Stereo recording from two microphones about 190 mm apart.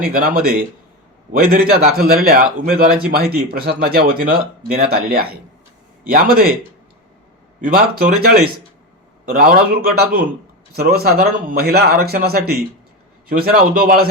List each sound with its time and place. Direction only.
0.1 s a man's voice: 50° right (ahead or behind)
7.6 s a man's voice: 50° right (ahead or behind)